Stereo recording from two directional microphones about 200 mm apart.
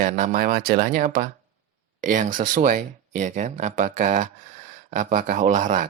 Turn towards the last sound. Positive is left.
turn(degrees=-40)  # may be behind; listen again after turning